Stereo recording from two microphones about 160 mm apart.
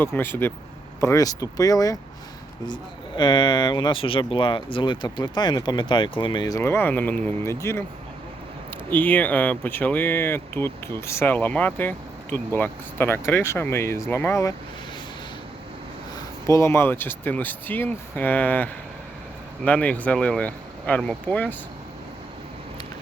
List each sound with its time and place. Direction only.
0.0 s speech: 15° left (ahead or behind)
3.2 s speech: 30° left (ahead or behind)
8.9 s speech: 10° left (ahead or behind)
16.1 s speech: 20° left (ahead or behind)